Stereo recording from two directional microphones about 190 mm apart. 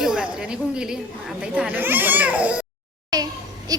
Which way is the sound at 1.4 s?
5° right (ahead or behind).